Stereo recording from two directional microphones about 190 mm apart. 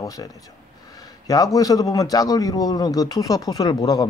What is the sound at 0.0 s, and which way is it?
A man's voice, 20° left (ahead or behind).